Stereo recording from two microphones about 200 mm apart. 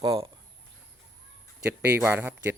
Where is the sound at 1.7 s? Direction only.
5° right (ahead or behind).